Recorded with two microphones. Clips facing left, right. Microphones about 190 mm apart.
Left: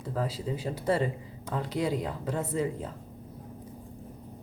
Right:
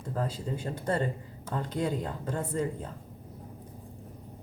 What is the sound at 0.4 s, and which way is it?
Speech, 5° left (ahead or behind).